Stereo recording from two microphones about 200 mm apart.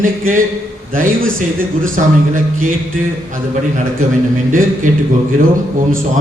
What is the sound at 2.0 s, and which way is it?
Speech, 40° right (ahead or behind).